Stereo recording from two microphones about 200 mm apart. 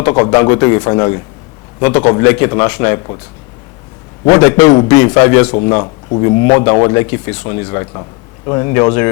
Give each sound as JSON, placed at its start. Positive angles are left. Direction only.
{"t": 0.0, "sound": "a man's voice", "side_deg": 20}
{"t": 4.3, "sound": "a man's voice", "side_deg": 15}